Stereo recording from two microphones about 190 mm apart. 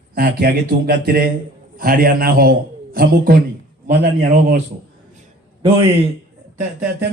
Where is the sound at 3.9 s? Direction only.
60° right (ahead or behind).